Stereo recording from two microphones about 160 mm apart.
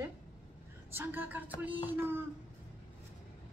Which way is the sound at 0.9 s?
15° right (ahead or behind).